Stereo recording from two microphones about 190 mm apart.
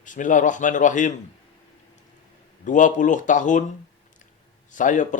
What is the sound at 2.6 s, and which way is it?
Speech, 40° left (ahead or behind).